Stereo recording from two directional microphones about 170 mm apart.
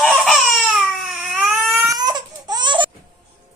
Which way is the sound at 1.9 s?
25° right (ahead or behind).